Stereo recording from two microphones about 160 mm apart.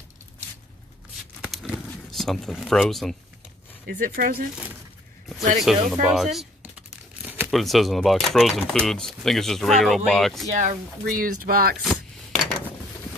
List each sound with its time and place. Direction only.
1.4 s a sound: centre (ahead or behind)
3.8 s speech: 70° right (ahead or behind)
5.6 s tearing: centre (ahead or behind)
7.5 s speech: centre (ahead or behind)
10.6 s speech: 55° right (ahead or behind)
11.8 s rub: 5° left (ahead or behind)